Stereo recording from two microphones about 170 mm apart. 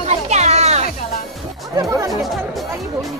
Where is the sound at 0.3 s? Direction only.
40° right (ahead or behind).